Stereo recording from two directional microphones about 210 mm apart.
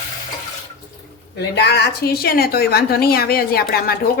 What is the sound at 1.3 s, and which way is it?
A woman's voice, 55° left (ahead or behind).